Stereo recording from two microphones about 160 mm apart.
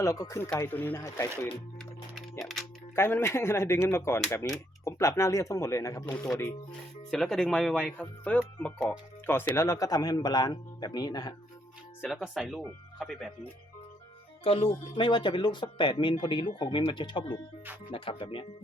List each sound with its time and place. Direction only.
0.0 s speech: 20° left (ahead or behind)
2.4 s music: centre (ahead or behind)
2.9 s speech: 15° left (ahead or behind)
7.1 s speech: 5° left (ahead or behind); by 11.3 s 25° left (ahead or behind)
12.2 s speech: centre (ahead or behind)
14.4 s speech: 35° left (ahead or behind)